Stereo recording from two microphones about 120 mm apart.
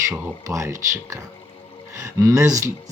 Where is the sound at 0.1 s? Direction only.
25° right (ahead or behind).